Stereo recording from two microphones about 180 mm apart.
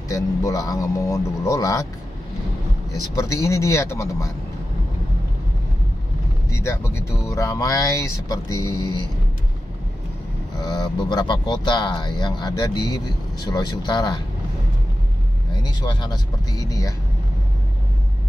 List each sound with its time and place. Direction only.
0.1 s speech: 20° left (ahead or behind)
3.2 s speech: 15° left (ahead or behind)
6.5 s speech: 15° left (ahead or behind)
10.6 s speech: 20° left (ahead or behind)
15.6 s speech: 25° left (ahead or behind)